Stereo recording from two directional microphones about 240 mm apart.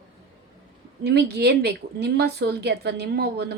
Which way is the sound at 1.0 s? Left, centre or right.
Right.